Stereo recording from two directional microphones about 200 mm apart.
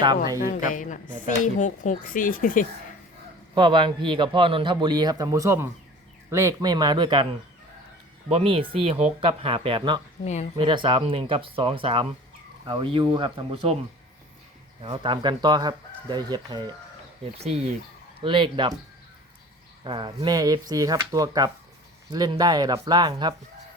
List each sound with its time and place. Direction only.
0.4 s speech: 40° left (ahead or behind)
3.5 s a man's voice: 25° right (ahead or behind)
8.3 s a man's voice: 30° right (ahead or behind)
10.2 s speech: 35° left (ahead or behind)
10.6 s a man's voice: 25° right (ahead or behind)
14.8 s a man's voice: 25° right (ahead or behind)
18.2 s a man's voice: 25° right (ahead or behind)
19.8 s a man's voice: 25° right (ahead or behind)